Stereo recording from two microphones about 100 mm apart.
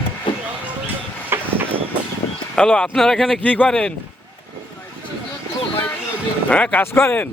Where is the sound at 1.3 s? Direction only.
25° right (ahead or behind).